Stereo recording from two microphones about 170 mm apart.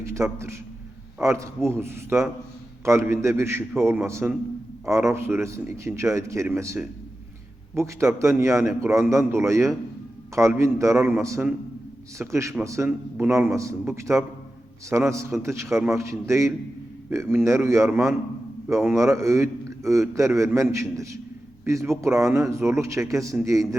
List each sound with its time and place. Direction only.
0.0 s a man's voice: 15° right (ahead or behind)